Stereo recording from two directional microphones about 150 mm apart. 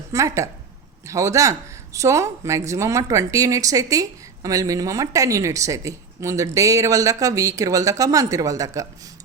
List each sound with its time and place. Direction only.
0.1 s speech: 20° right (ahead or behind)